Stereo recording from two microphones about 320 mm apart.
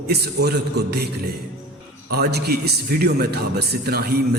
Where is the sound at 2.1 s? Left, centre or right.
Right.